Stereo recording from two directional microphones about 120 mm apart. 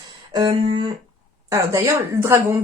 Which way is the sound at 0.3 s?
35° right (ahead or behind).